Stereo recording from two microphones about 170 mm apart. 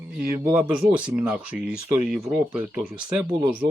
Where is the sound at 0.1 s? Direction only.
5° right (ahead or behind).